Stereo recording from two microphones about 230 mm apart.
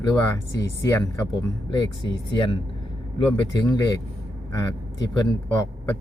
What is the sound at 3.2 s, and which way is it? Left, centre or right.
Speech, centre.